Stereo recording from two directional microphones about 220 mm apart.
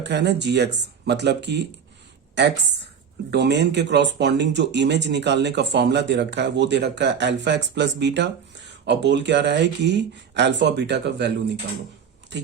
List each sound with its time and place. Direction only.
0.0 s speech: 50° right (ahead or behind)